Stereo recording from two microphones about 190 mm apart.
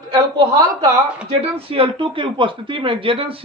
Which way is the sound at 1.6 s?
30° right (ahead or behind).